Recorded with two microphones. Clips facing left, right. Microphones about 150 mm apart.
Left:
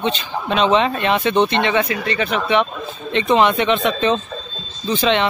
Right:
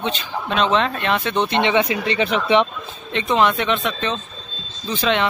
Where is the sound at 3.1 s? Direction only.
Centre (ahead or behind).